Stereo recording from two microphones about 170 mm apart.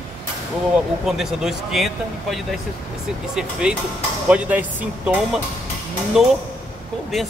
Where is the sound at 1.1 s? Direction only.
Centre (ahead or behind).